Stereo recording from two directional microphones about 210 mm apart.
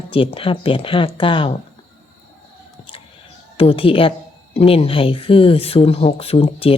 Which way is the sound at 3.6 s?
25° left (ahead or behind).